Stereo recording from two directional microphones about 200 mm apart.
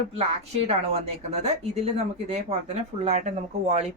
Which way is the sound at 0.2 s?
30° right (ahead or behind).